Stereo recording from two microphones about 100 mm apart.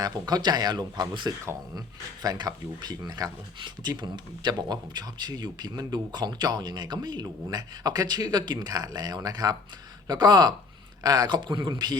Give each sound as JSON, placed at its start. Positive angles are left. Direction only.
{"t": 0.0, "sound": "speech", "side_deg": -40}
{"t": 1.3, "sound": "speech", "side_deg": -30}
{"t": 2.2, "sound": "speech", "side_deg": -40}